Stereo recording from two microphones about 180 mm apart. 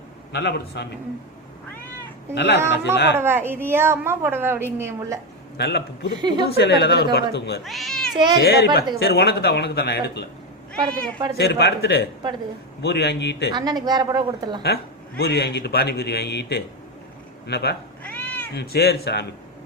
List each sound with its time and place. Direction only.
0.3 s a man's voice: 65° left (ahead or behind)
2.3 s a man's voice: 70° left (ahead or behind)
3.2 s a woman's voice: 15° right (ahead or behind)
5.5 s a man's voice: 65° left (ahead or behind)
6.1 s a woman's voice: 25° right (ahead or behind)
6.6 s a man's voice: 70° left (ahead or behind)
7.6 s speech: centre (ahead or behind)
8.1 s a woman's voice: 25° right (ahead or behind)
8.4 s a man's voice: 60° left (ahead or behind)
11.3 s a man's voice: 65° left (ahead or behind)
13.5 s a woman's voice: 25° right (ahead or behind)
14.6 s a man's voice: 65° left (ahead or behind)
18.0 s cat: 10° left (ahead or behind)
18.5 s a man's voice: 60° left (ahead or behind)